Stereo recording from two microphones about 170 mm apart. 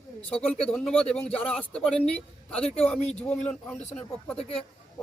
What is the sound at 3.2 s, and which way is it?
Speech, 10° left (ahead or behind).